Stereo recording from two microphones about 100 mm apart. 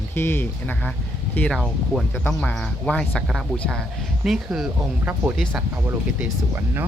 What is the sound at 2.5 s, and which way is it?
Speech, 10° left (ahead or behind).